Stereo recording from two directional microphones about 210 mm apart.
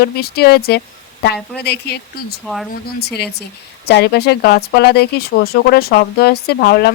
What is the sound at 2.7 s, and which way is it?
Speech, 50° left (ahead or behind).